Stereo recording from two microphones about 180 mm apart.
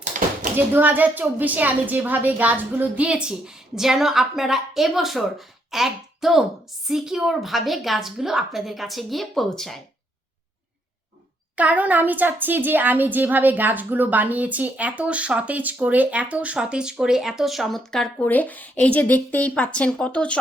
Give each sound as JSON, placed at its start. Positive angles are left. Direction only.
{"t": 0.1, "sound": "a sound", "side_deg": -45}
{"t": 0.5, "sound": "a woman's voice", "side_deg": -10}
{"t": 11.5, "sound": "a woman's voice", "side_deg": -10}